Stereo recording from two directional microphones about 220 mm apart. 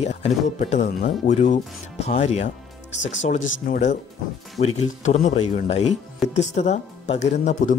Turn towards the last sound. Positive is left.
turn(degrees=35)  # may be behind; listen again after turning